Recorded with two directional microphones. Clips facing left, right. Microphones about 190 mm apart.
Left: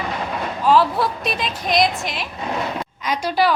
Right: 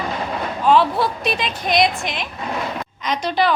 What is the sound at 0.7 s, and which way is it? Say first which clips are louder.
A woman's voice: right 1 dB; centre (ahead or behind).